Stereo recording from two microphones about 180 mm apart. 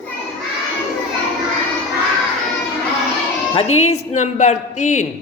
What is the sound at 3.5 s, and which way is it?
Speech, 35° left (ahead or behind).